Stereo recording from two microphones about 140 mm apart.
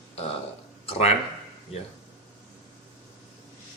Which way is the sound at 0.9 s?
50° left (ahead or behind).